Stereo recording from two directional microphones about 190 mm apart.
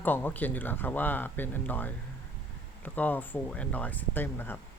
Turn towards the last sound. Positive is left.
turn(degrees=10)  # may be behind; listen again after turning